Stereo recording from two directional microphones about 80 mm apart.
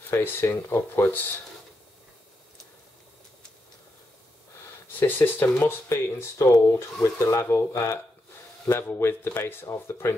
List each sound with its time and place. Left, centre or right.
0.1 s speech: left
5.0 s speech: left
5.9 s speech: left